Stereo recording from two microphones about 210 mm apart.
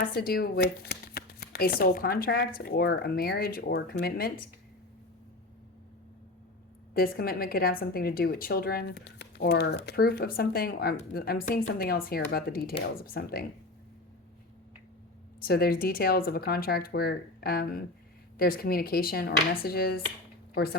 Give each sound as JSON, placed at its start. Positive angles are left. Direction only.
{"t": 0.0, "sound": "a woman's voice", "side_deg": 45}
{"t": 6.9, "sound": "a woman's voice", "side_deg": 45}
{"t": 15.4, "sound": "a woman's voice", "side_deg": 45}